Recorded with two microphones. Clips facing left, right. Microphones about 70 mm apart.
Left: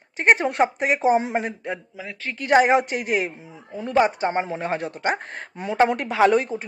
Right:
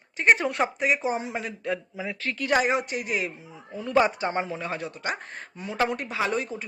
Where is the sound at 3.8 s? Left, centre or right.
Left.